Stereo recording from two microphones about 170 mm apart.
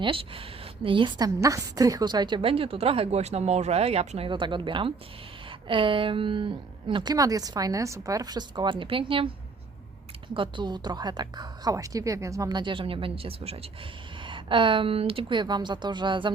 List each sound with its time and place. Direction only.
0.0 s a woman's voice: 30° right (ahead or behind)
10.3 s a woman's voice: 30° right (ahead or behind)